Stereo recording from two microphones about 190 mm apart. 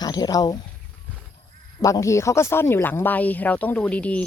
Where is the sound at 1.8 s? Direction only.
15° left (ahead or behind).